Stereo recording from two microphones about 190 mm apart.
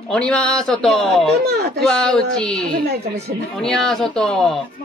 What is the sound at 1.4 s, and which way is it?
Speech, 55° right (ahead or behind).